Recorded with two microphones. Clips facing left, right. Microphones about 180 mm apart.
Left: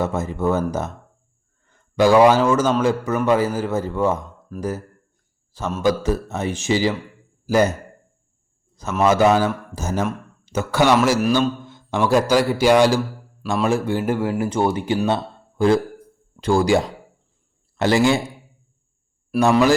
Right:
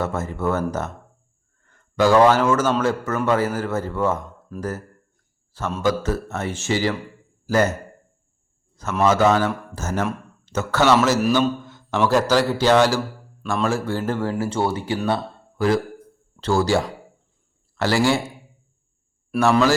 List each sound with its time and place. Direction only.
0.0 s speech: 15° left (ahead or behind)
2.0 s speech: 15° left (ahead or behind)
5.8 s speech: 15° left (ahead or behind)
8.7 s a sound: 15° left (ahead or behind)
9.0 s speech: 15° left (ahead or behind)
16.4 s a man's voice: 15° left (ahead or behind)
19.4 s speech: 15° left (ahead or behind)